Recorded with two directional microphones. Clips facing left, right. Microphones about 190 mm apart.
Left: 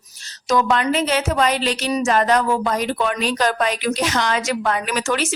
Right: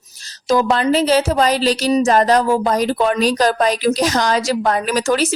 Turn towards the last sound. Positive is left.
turn(degrees=-35)  # may be behind; listen again after turning